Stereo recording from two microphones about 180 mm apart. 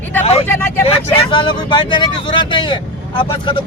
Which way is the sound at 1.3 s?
25° left (ahead or behind).